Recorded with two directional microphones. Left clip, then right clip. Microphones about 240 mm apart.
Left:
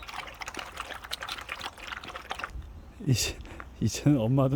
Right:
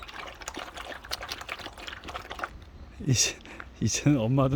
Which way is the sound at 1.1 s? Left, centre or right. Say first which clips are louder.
Right 1 dB; centre.